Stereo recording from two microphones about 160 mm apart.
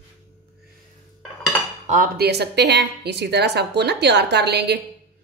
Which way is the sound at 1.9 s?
70° right (ahead or behind).